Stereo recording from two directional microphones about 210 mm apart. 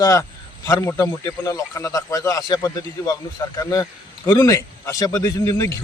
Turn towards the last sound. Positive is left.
turn(degrees=10)  # may be behind; listen again after turning